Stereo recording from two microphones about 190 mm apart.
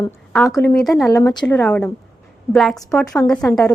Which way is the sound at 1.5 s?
5° left (ahead or behind).